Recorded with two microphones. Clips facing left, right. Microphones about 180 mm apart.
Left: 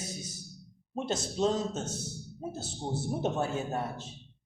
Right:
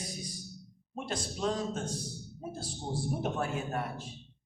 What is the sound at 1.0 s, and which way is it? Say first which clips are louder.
A man's voice: left 4 dB; 25° left (ahead or behind).